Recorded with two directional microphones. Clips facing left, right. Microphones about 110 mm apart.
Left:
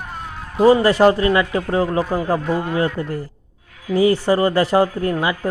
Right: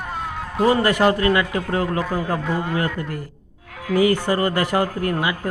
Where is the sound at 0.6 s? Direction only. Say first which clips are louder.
Left 5 dB; 30° left (ahead or behind).